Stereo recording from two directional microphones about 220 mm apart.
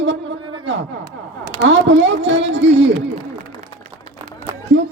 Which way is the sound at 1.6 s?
55° right (ahead or behind).